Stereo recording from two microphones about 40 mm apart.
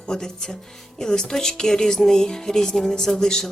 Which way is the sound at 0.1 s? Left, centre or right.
Centre.